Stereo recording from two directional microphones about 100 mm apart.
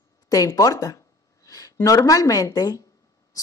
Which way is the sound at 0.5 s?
35° left (ahead or behind).